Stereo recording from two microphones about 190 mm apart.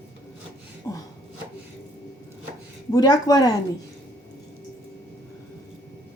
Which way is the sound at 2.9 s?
20° left (ahead or behind).